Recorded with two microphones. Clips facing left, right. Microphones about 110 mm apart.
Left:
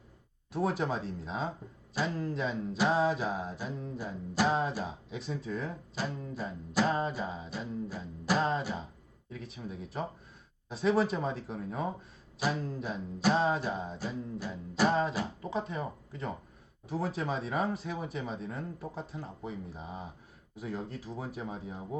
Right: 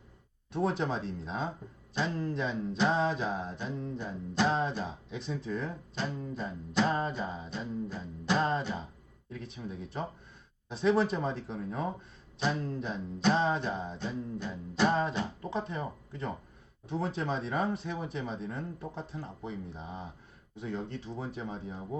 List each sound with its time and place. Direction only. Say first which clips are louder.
0.5 s mantra: even; 5° left (ahead or behind)